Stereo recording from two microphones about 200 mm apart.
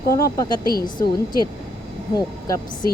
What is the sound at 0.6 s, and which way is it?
Speech, 50° left (ahead or behind).